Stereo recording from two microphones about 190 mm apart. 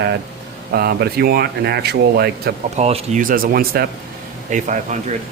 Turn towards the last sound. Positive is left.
turn(degrees=-40)  # may be behind; listen again after turning